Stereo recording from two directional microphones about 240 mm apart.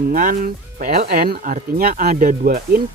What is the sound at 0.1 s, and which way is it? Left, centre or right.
Speech, right.